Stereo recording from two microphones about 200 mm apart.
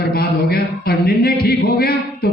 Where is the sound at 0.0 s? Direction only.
50° left (ahead or behind).